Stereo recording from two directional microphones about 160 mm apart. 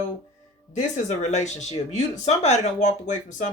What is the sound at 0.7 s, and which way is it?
Speech, 50° left (ahead or behind).